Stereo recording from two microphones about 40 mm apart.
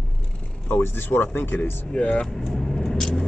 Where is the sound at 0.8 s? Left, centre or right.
Left.